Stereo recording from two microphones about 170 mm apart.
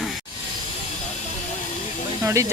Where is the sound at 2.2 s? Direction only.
15° right (ahead or behind).